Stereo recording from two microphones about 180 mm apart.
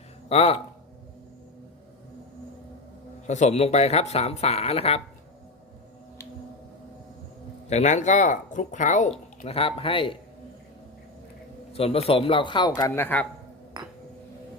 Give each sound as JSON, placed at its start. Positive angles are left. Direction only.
{"t": 0.3, "sound": "speech", "side_deg": 35}
{"t": 3.2, "sound": "speech", "side_deg": 40}
{"t": 7.7, "sound": "speech", "side_deg": 40}
{"t": 9.4, "sound": "speech", "side_deg": 35}
{"t": 11.7, "sound": "a man's voice", "side_deg": 35}